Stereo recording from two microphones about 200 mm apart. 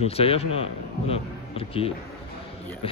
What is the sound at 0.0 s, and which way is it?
A man's voice, 30° left (ahead or behind).